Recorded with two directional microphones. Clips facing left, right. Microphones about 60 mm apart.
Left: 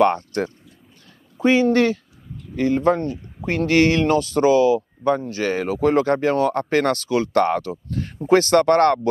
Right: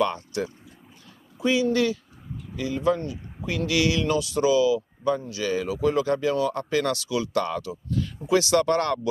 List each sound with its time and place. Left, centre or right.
0.0 s speech: left